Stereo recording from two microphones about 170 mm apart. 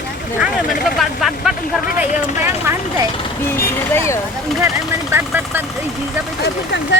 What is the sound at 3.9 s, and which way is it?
Speech, 15° left (ahead or behind).